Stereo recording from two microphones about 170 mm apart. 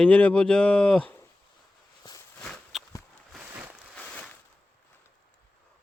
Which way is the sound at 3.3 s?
10° right (ahead or behind).